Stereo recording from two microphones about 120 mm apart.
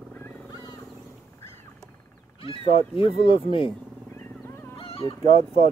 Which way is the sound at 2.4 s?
50° left (ahead or behind).